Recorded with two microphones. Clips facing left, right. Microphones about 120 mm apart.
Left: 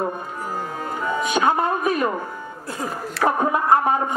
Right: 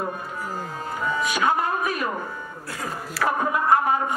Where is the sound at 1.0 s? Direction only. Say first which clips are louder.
Left 3 dB; 25° left (ahead or behind).